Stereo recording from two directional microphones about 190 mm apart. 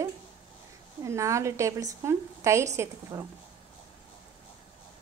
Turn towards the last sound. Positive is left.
turn(degrees=-15)  # may be behind; listen again after turning